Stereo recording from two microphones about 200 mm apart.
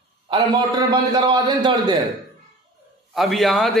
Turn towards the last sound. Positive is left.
turn(degrees=0)  # may be behind; listen again after turning